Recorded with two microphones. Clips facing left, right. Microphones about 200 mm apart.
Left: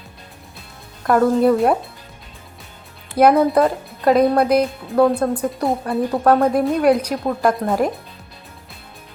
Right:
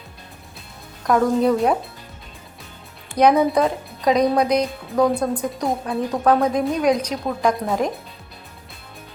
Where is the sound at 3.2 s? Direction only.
5° left (ahead or behind).